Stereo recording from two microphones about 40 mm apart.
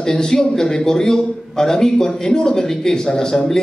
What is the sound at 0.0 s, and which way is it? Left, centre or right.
A man's voice, centre.